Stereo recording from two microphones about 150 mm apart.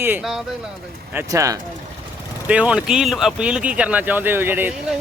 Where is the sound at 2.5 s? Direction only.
10° right (ahead or behind).